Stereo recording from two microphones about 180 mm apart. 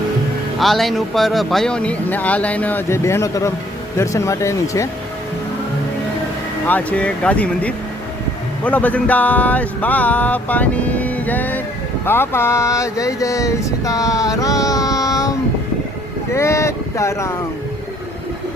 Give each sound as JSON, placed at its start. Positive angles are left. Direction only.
{"t": 0.6, "sound": "speech", "side_deg": 0}
{"t": 6.7, "sound": "speech", "side_deg": 10}